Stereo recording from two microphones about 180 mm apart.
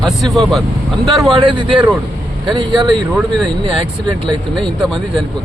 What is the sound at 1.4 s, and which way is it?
Speech, 30° right (ahead or behind).